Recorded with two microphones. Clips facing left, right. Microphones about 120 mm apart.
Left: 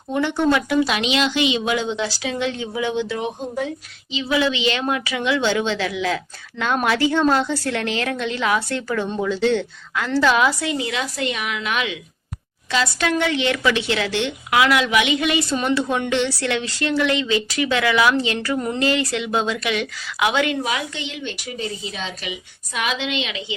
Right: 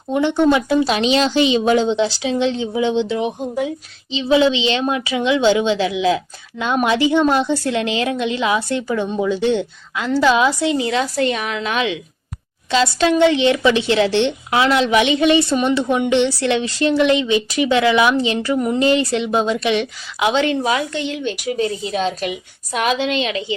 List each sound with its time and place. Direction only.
0.1 s a woman's voice: 20° right (ahead or behind)
20.7 s a woman's voice: 40° right (ahead or behind)